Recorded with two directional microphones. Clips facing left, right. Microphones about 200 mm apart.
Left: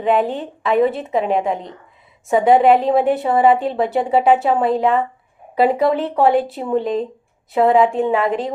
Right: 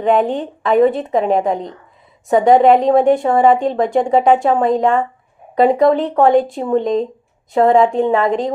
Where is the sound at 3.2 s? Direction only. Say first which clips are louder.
Right 2 dB; 45° right (ahead or behind).